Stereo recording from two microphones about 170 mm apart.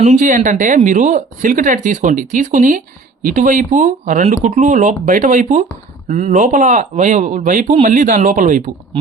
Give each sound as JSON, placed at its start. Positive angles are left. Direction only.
{"t": 0.0, "sound": "speech", "side_deg": -45}